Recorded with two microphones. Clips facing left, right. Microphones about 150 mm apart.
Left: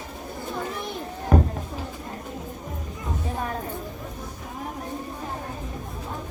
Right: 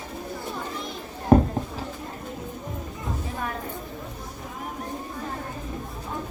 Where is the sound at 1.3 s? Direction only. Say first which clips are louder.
Right 5 dB; 30° right (ahead or behind).